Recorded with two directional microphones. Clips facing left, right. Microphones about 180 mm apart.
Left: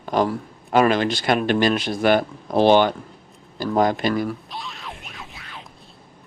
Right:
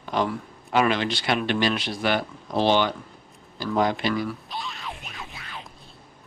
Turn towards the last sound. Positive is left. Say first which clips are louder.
# even
turn(degrees=0)  # may be behind; listen again after turning